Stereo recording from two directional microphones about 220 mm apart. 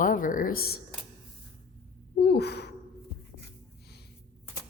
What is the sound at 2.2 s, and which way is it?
Speech, 50° left (ahead or behind).